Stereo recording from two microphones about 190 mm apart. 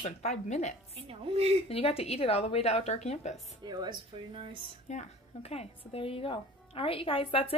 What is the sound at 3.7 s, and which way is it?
Speech, 20° right (ahead or behind).